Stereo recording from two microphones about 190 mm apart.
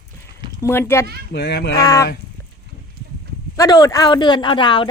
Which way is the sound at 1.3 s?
60° left (ahead or behind).